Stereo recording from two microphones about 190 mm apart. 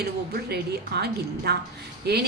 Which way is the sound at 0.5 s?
60° right (ahead or behind).